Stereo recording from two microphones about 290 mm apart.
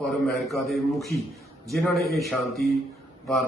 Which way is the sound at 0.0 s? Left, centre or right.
Centre.